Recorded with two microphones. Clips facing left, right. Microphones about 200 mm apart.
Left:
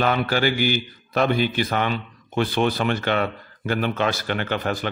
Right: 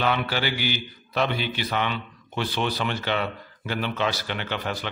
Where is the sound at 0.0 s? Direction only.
45° left (ahead or behind).